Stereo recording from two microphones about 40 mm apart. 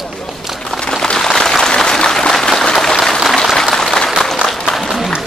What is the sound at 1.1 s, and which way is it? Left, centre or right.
Applause, centre.